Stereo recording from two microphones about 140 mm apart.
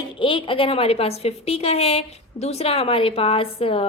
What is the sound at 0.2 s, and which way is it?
A woman's voice, 40° left (ahead or behind).